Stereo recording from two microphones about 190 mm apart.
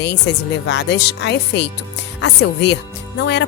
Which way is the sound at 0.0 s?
65° left (ahead or behind).